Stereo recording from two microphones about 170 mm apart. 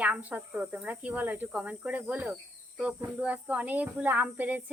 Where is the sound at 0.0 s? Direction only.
10° right (ahead or behind).